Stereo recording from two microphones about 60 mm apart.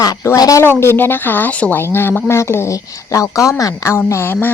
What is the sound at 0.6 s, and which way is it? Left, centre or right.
A woman's voice, left.